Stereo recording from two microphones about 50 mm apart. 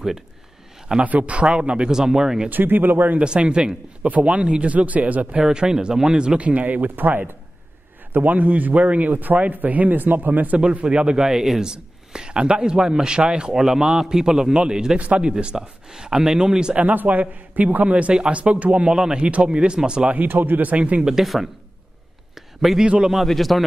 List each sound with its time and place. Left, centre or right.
1.0 s a man's voice: right
2.5 s a man's voice: right
3.2 s a man's voice: right
8.1 s a man's voice: right
10.7 s a man's voice: right
11.2 s a man's voice: centre
15.0 s a man's voice: right
16.8 s a man's voice: right; by 20.1 s centre
20.1 s a man's voice: right
21.1 s speech: centre
22.3 s a sound: centre
22.8 s a man's voice: right
23.2 s speech: centre